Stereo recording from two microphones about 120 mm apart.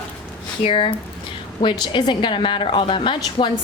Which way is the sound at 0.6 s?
50° left (ahead or behind).